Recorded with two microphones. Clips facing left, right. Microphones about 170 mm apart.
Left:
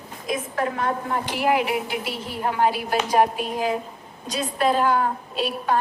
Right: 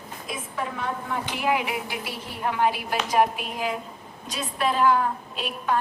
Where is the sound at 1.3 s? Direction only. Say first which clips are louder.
Left 4 dB; 40° left (ahead or behind).